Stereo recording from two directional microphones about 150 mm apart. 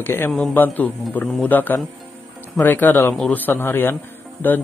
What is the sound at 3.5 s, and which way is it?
Speech, 15° left (ahead or behind).